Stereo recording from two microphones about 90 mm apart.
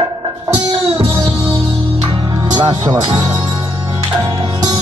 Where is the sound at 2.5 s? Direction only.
55° right (ahead or behind).